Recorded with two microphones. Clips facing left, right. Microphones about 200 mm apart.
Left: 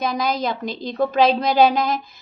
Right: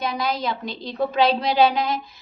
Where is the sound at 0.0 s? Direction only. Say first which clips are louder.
Left 3 dB; 40° left (ahead or behind).